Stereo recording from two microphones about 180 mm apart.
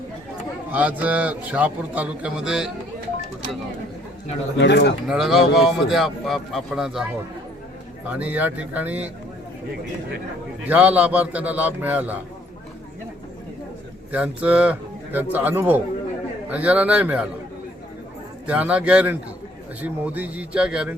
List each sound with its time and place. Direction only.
0.7 s speech: 10° right (ahead or behind)
4.6 s speech: 75° left (ahead or behind)
5.0 s speech: centre (ahead or behind)
8.1 s speech: 10° right (ahead or behind)
10.7 s speech: 10° right (ahead or behind)
14.1 s speech: 5° right (ahead or behind)
18.4 s speech: 5° right (ahead or behind)